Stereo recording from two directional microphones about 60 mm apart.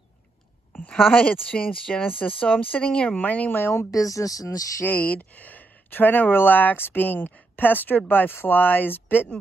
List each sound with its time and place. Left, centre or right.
1.1 s speech: left
2.2 s speech: left
3.9 s speech: left
4.8 s speech: left